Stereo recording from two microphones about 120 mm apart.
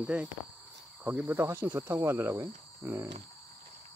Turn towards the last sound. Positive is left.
turn(degrees=-25)  # may be behind; listen again after turning